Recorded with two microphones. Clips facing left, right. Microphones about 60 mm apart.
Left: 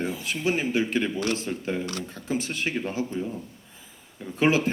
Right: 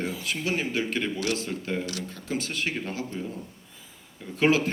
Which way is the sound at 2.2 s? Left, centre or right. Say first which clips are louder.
Left 2 dB; centre.